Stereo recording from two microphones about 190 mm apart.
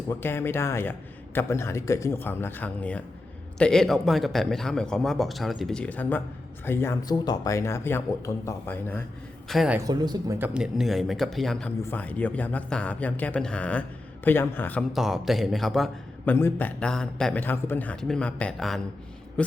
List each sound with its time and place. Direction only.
0.1 s a man's voice: 10° left (ahead or behind)
9.7 s a man's voice: 20° right (ahead or behind)
10.3 s a man's voice: 5° right (ahead or behind); by 14.8 s 10° left (ahead or behind)
14.9 s a man's voice: centre (ahead or behind)